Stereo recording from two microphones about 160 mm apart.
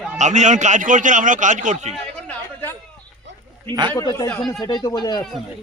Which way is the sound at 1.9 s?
10° left (ahead or behind).